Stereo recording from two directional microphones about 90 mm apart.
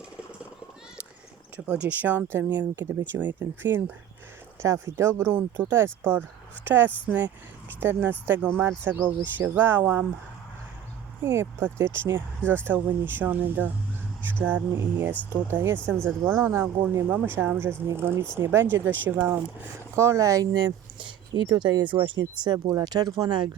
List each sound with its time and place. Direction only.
1.5 s speech: 15° right (ahead or behind)
11.2 s speech: 25° right (ahead or behind); by 23.5 s 55° right (ahead or behind)